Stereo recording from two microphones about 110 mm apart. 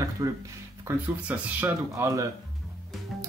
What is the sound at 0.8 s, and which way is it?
Speech, 15° right (ahead or behind).